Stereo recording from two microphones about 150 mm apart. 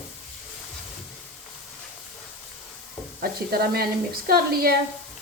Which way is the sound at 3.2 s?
90° right.